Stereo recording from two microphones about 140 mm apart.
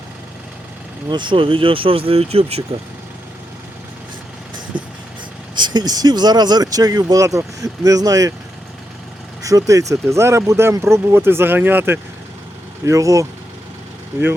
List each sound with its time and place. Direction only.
1.1 s speech: 35° right (ahead or behind)
4.7 s vehicle: 35° right (ahead or behind)
5.5 s speech: 30° right (ahead or behind)
9.4 s speech: 25° right (ahead or behind)